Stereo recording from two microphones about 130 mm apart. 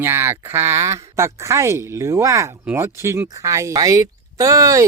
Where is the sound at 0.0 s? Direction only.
20° right (ahead or behind).